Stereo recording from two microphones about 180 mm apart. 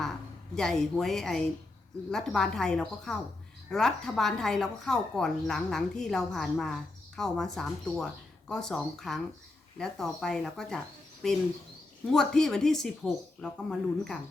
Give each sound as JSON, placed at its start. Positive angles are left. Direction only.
{"t": 0.0, "sound": "speech", "side_deg": 5}